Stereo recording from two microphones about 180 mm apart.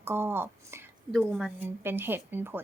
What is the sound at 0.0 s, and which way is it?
A woman's voice, 15° right (ahead or behind).